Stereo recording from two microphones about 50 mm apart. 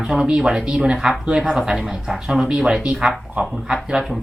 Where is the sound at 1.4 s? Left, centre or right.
Centre.